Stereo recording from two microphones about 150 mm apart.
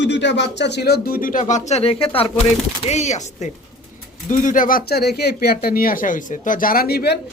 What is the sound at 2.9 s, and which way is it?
Speech, 50° left (ahead or behind).